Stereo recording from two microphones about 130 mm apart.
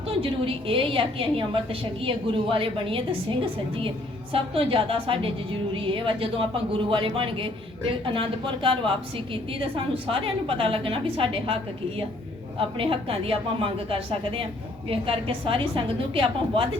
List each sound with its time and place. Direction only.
0.1 s a woman's voice: 45° right (ahead or behind)